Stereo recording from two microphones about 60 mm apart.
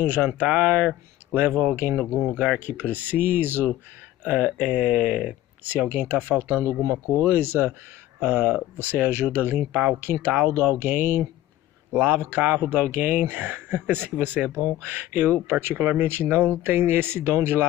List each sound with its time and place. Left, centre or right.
0.0 s speech: right
2.6 s speech: right
4.2 s speech: right
5.6 s speech: right
6.8 s speech: right
7.2 s speech: right
10.5 s speech: right